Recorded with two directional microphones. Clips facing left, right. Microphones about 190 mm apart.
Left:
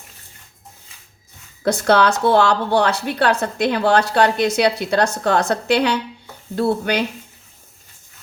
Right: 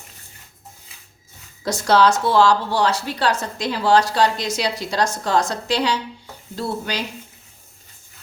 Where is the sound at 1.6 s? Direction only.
55° left (ahead or behind).